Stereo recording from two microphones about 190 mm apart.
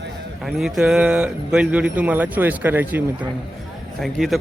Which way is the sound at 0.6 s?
5° right (ahead or behind).